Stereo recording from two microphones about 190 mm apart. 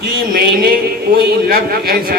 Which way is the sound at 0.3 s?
55° right (ahead or behind).